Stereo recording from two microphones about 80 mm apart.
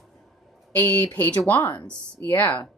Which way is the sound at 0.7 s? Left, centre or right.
Left.